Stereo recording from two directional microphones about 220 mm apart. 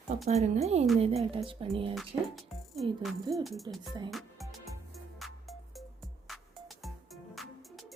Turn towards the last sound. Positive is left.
turn(degrees=0)  # may be behind; listen again after turning